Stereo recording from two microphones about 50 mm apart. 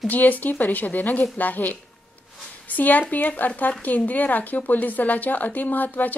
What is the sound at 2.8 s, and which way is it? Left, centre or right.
A woman's voice, left.